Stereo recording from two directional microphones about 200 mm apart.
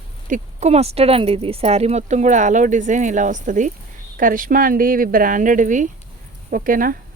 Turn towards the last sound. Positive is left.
turn(degrees=-45)  # may be behind; listen again after turning